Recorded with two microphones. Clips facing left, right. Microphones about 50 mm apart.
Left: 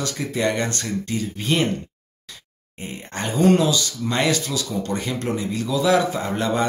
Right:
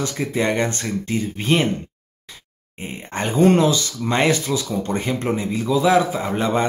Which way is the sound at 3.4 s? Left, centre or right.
Right.